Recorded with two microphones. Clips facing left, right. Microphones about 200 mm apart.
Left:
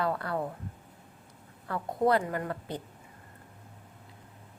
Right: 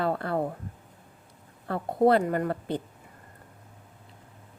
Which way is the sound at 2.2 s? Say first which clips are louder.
Right 6 dB; 45° right (ahead or behind).